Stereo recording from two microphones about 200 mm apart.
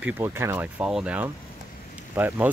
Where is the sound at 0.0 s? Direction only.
15° right (ahead or behind).